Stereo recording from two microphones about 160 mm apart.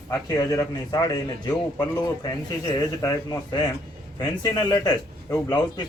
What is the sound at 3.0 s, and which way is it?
A man's voice, 25° left (ahead or behind).